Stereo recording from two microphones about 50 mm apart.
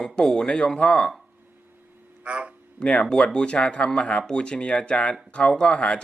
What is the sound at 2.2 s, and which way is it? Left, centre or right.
Speech, right.